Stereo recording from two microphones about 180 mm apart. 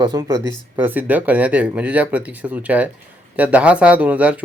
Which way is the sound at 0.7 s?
10° right (ahead or behind).